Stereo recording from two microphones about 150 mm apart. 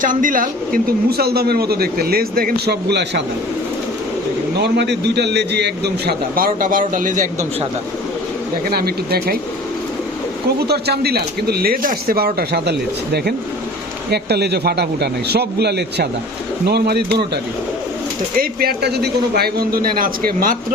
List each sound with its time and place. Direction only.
0.0 s speech: 60° right (ahead or behind); by 3.0 s 80° right
5.3 s a man's voice: 90° right; by 7.3 s 60° right (ahead or behind)
8.7 s speech: 90° right
10.6 s speech: 90° right
14.1 s speech: 90° right
18.3 s a man's voice: 90° right; by 20.7 s 70° right (ahead or behind)